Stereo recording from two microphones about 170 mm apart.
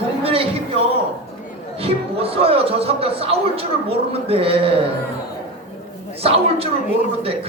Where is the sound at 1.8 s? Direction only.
35° right (ahead or behind).